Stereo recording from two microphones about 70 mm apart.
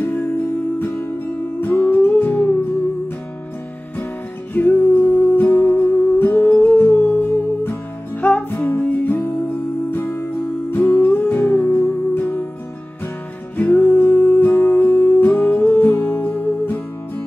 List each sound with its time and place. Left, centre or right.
0.0 s music: left
4.6 s music: left
5.3 s music: left
13.6 s music: left